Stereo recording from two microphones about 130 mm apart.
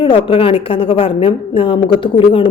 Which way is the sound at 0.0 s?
45° left (ahead or behind).